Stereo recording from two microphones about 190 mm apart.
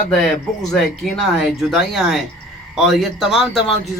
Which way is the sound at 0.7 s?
Centre (ahead or behind).